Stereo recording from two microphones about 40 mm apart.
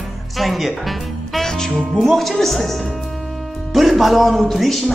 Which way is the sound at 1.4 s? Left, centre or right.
Centre.